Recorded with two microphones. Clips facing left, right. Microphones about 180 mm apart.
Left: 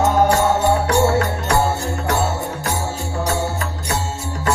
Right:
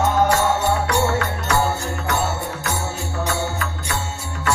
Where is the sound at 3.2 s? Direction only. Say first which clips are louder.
Left 2 dB; 40° left (ahead or behind).